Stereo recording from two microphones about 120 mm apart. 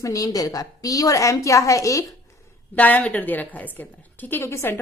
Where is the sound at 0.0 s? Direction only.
30° left (ahead or behind).